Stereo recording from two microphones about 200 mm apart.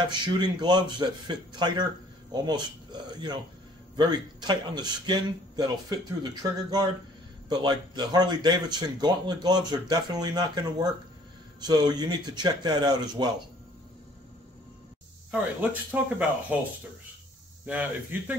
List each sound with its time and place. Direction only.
0.1 s speech: 20° right (ahead or behind)
15.3 s speech: 5° right (ahead or behind)
17.6 s speech: 5° right (ahead or behind)